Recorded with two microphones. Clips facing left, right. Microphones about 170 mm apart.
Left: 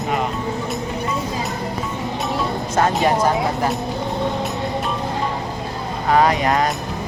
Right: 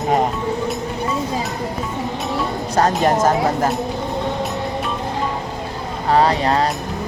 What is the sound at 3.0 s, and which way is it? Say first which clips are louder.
Speech: right 2 dB; 45° right (ahead or behind).